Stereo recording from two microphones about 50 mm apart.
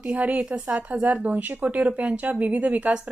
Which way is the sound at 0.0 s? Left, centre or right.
Right.